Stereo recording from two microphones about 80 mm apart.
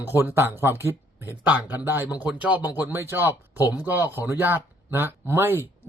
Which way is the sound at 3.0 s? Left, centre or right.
Right.